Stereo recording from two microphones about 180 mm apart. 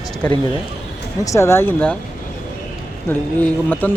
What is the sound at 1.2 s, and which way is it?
Speech, 15° left (ahead or behind).